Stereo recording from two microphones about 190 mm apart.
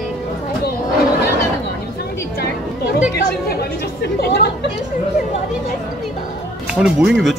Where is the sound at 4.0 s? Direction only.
60° left (ahead or behind).